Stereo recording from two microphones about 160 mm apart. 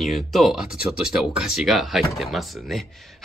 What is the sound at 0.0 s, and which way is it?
Speech, centre (ahead or behind).